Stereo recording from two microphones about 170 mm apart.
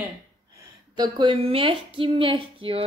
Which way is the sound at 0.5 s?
20° right (ahead or behind).